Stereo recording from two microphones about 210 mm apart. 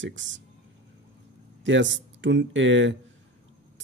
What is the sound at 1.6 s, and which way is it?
Speech, 60° right (ahead or behind).